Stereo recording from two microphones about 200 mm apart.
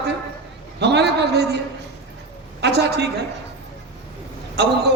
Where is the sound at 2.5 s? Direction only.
55° right (ahead or behind).